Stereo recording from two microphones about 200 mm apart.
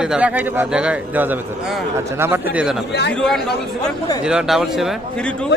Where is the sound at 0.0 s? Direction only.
5° right (ahead or behind).